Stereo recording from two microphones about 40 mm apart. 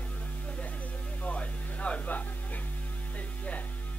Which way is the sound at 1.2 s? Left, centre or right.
Left.